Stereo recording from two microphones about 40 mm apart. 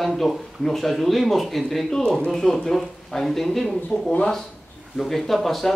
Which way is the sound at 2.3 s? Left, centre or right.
Centre.